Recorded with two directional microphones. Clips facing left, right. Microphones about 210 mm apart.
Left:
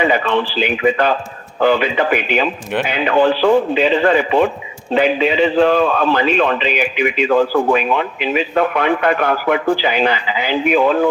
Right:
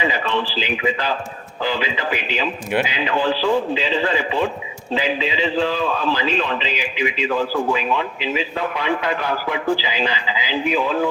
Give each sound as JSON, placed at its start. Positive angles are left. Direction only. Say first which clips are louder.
{"t": 0.0, "sound": "a man's voice", "louder": "left 6 dB", "side_deg": 60}